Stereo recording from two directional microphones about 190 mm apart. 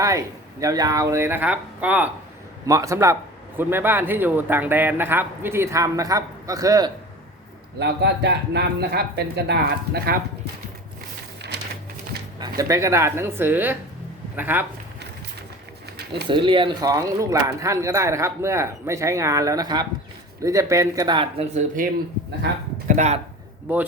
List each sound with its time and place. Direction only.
0.0 s speech: 15° right (ahead or behind)
2.6 s speech: 15° right (ahead or behind)
7.8 s speech: 60° right (ahead or behind)
12.4 s speech: 15° right (ahead or behind)
16.3 s speech: 25° right (ahead or behind)
22.9 s speech: 35° right (ahead or behind)